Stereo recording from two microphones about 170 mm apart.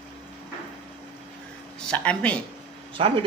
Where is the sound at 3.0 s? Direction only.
30° right (ahead or behind).